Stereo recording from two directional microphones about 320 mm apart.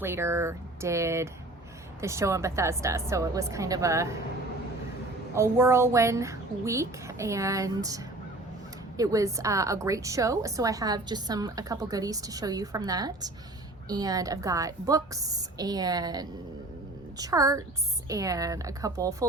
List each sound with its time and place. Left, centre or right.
0.0 s a woman's voice: centre
5.3 s a woman's voice: centre